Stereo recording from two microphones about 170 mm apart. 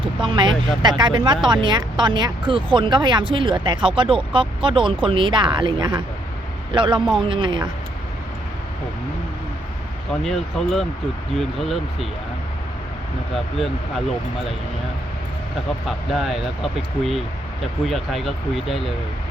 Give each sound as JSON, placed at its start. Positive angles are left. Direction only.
{"t": 0.0, "sound": "speech", "side_deg": -30}
{"t": 10.2, "sound": "speech", "side_deg": 0}
{"t": 15.9, "sound": "speech", "side_deg": 0}